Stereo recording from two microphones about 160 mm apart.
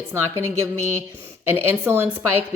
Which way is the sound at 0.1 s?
15° right (ahead or behind).